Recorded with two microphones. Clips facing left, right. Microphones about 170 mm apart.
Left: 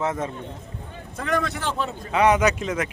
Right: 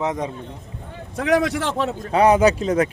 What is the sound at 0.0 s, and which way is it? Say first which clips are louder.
Speech: right 2 dB; 15° right (ahead or behind).